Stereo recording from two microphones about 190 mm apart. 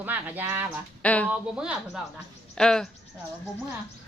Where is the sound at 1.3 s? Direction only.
5° right (ahead or behind).